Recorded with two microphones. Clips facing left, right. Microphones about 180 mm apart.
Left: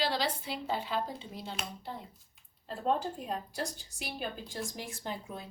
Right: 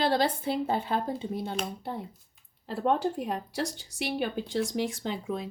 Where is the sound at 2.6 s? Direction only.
70° right (ahead or behind).